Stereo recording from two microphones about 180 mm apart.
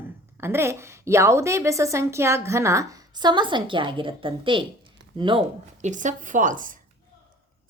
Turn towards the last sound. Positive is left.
turn(degrees=-45)  # may be behind; listen again after turning